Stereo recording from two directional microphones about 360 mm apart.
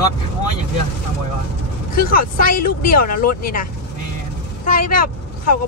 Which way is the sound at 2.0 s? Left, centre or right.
Left.